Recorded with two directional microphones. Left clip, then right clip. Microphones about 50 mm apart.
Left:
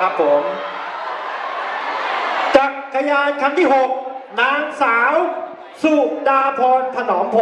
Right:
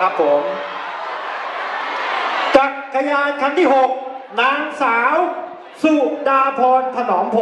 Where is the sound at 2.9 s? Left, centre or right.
Centre.